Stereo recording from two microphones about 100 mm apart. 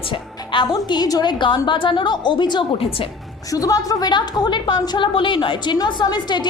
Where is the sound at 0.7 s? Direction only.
45° left (ahead or behind).